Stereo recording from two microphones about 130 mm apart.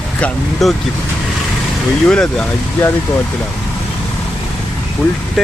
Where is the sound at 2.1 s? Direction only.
5° left (ahead or behind).